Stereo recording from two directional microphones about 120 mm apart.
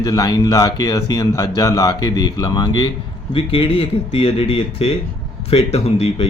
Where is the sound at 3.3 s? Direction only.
50° left (ahead or behind).